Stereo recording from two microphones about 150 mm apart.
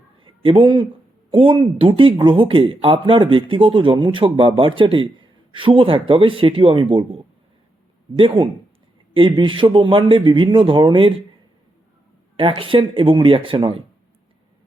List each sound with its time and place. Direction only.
0.2 s a sound: 35° right (ahead or behind)
1.3 s speech: 35° right (ahead or behind)
8.2 s speech: 35° right (ahead or behind)
12.4 s speech: 35° right (ahead or behind)